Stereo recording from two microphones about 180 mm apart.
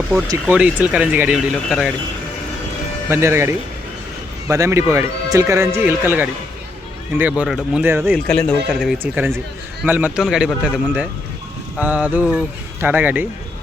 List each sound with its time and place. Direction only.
0.4 s speech: 5° right (ahead or behind)
3.1 s speech: 15° right (ahead or behind)
8.3 s speech: 5° left (ahead or behind); by 13.2 s 10° right (ahead or behind)